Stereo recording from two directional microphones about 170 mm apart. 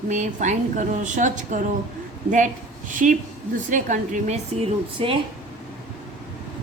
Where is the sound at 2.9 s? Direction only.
50° right (ahead or behind).